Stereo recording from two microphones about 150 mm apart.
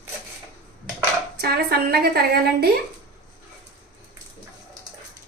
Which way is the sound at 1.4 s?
90° right.